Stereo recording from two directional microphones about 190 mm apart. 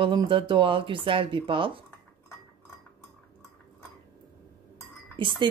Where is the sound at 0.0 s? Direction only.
25° right (ahead or behind).